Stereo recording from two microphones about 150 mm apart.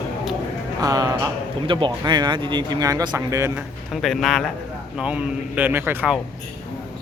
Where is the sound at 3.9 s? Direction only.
Centre (ahead or behind).